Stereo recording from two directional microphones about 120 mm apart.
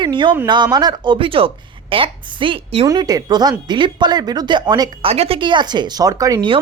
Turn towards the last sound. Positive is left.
turn(degrees=-30)  # may be behind; listen again after turning